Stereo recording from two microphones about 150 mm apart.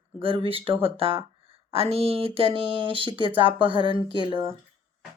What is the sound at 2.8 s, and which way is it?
Speech, 35° right (ahead or behind).